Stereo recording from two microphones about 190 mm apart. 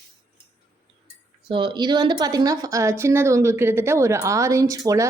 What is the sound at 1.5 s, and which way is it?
Speech, 25° right (ahead or behind).